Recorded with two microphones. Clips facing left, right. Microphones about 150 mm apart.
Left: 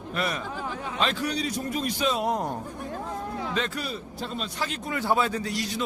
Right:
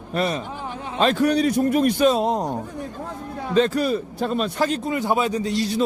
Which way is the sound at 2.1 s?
20° right (ahead or behind).